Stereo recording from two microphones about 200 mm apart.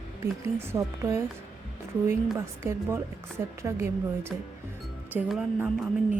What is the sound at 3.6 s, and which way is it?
Speech, 15° right (ahead or behind).